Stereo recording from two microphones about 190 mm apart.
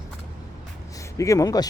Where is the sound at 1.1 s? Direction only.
15° left (ahead or behind).